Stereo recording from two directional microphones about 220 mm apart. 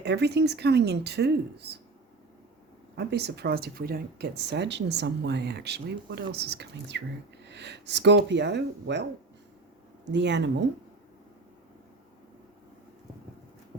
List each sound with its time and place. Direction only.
0.0 s speech: 50° right (ahead or behind)
2.9 s speech: 50° right (ahead or behind)
10.1 s speech: 50° right (ahead or behind)